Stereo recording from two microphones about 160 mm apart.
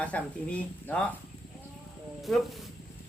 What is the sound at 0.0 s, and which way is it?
Speech, 10° left (ahead or behind).